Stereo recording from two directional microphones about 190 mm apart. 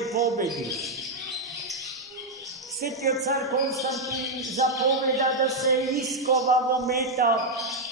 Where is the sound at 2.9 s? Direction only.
Centre (ahead or behind).